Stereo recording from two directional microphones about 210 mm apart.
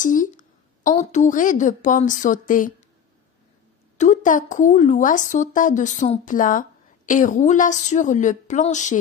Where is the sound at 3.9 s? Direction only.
35° left (ahead or behind).